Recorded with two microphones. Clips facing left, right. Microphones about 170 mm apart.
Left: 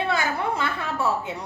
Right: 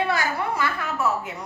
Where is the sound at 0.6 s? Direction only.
25° left (ahead or behind).